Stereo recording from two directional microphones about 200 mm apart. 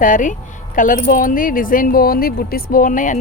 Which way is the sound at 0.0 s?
40° left (ahead or behind).